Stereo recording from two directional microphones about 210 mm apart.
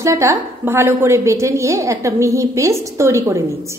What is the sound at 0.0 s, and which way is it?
A woman's voice, 15° right (ahead or behind).